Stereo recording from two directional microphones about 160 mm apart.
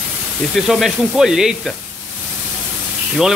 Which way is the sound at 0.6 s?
Centre (ahead or behind).